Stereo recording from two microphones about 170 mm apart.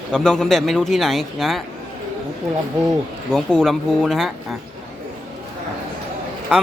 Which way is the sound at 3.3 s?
Centre (ahead or behind).